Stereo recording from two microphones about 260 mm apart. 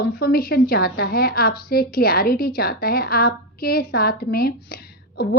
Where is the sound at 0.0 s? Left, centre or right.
Left.